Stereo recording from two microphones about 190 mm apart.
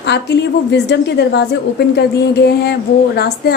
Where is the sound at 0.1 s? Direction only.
65° left (ahead or behind).